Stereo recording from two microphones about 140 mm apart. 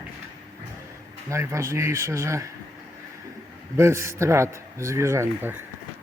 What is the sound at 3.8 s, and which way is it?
Speech, 20° right (ahead or behind).